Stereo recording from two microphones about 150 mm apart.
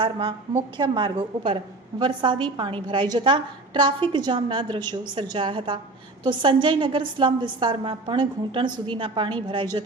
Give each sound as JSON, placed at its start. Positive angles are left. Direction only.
{"t": 0.0, "sound": "a woman's voice", "side_deg": -35}